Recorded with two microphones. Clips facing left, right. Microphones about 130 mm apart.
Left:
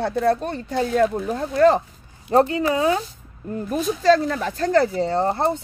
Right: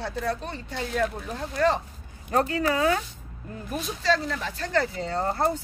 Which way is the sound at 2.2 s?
25° left (ahead or behind).